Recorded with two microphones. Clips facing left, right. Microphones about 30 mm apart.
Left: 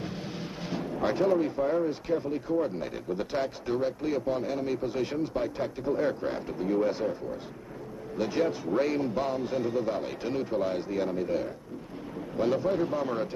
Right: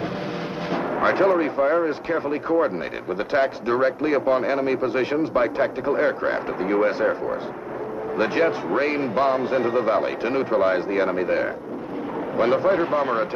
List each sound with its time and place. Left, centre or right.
0.7 s speech: right
8.2 s speech: right